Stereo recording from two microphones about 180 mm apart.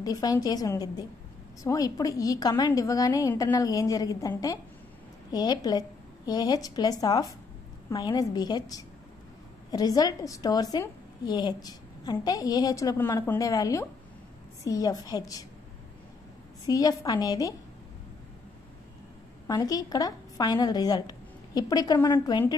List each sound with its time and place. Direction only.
0.0 s a woman's voice: 20° left (ahead or behind)
16.6 s a woman's voice: 20° left (ahead or behind)
19.4 s a woman's voice: 20° left (ahead or behind)